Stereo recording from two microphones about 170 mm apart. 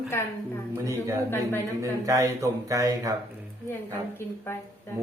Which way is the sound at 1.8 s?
20° right (ahead or behind).